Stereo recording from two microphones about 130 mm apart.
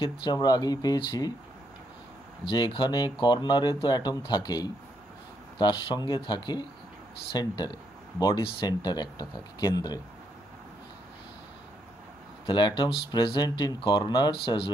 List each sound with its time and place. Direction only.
0.0 s speech: 30° left (ahead or behind)
2.5 s speech: 35° left (ahead or behind)
12.4 s speech: 35° left (ahead or behind)